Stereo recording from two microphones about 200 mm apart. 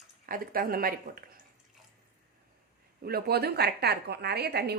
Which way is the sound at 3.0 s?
50° right (ahead or behind).